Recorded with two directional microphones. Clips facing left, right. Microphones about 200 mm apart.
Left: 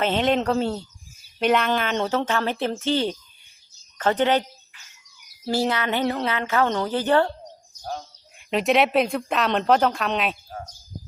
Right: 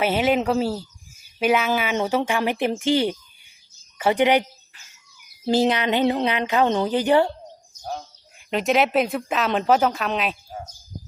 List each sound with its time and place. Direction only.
0.0 s a woman's voice: 5° right (ahead or behind)
5.5 s a woman's voice: 20° right (ahead or behind)
7.9 s speech: centre (ahead or behind)